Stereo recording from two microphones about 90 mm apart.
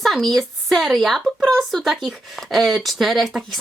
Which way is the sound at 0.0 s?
Centre (ahead or behind).